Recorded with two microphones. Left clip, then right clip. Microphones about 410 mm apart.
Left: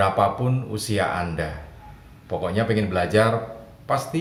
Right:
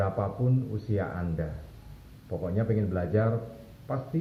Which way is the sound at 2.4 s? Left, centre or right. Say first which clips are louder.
Left 7 dB; centre.